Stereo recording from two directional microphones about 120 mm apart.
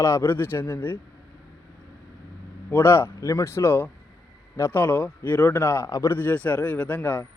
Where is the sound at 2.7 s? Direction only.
20° left (ahead or behind).